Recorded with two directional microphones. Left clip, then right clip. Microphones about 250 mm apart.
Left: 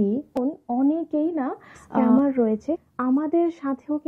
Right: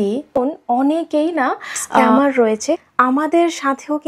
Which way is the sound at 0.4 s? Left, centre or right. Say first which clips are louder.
Right 9 dB; centre.